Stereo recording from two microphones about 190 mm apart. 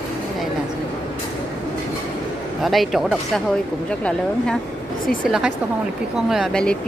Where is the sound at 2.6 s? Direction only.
Centre (ahead or behind).